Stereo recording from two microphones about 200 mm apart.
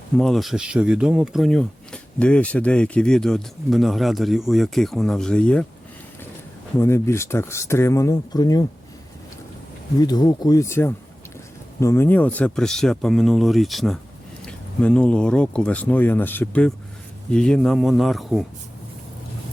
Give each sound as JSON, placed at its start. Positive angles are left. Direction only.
{"t": 0.2, "sound": "speech", "side_deg": 0}
{"t": 6.7, "sound": "speech", "side_deg": 10}
{"t": 10.0, "sound": "speech", "side_deg": 20}